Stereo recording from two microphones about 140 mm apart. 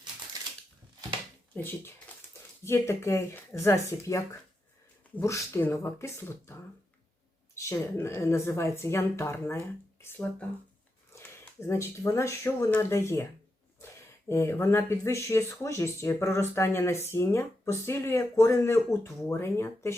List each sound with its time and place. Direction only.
1.5 s speech: 15° left (ahead or behind)
14.3 s speech: 20° left (ahead or behind)